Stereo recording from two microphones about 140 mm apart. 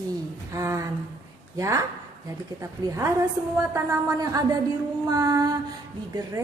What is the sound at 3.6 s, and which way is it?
A woman's voice, 20° right (ahead or behind).